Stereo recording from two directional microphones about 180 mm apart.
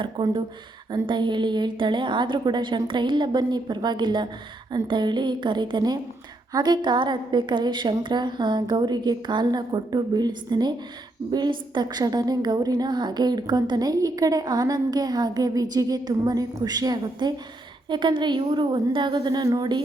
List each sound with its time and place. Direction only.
0.0 s a woman's voice: 25° right (ahead or behind)